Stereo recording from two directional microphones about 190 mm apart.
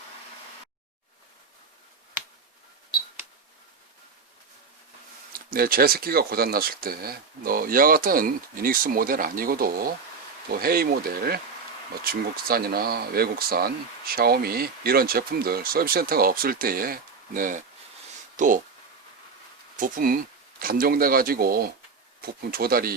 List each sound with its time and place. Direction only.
5.3 s speech: 50° right (ahead or behind)
19.7 s speech: 45° right (ahead or behind)